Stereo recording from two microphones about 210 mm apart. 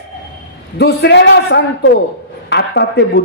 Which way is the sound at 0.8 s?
55° left (ahead or behind).